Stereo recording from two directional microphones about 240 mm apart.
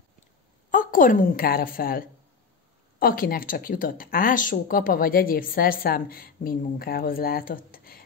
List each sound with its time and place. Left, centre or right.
0.7 s a woman's voice: left